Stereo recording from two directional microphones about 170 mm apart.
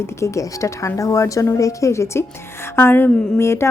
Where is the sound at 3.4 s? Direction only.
15° left (ahead or behind).